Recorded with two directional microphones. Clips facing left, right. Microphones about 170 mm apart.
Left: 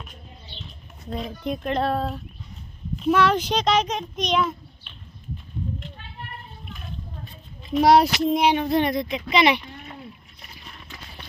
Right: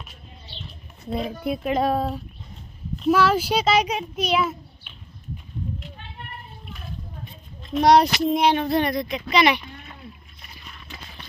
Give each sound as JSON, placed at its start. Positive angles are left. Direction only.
{"t": 0.0, "sound": "a sound", "side_deg": -5}
{"t": 1.1, "sound": "a child's voice", "side_deg": -5}
{"t": 7.6, "sound": "speech", "side_deg": 5}
{"t": 8.5, "sound": "speech", "side_deg": 15}